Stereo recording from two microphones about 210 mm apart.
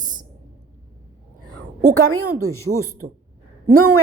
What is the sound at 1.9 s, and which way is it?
Speech, 90° right.